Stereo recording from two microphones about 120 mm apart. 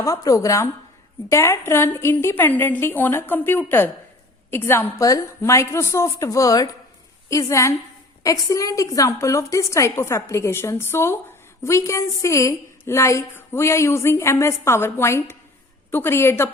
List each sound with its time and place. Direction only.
0.0 s a woman's voice: 25° left (ahead or behind)